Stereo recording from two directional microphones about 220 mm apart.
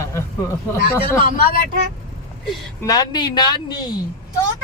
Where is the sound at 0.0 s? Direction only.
15° left (ahead or behind).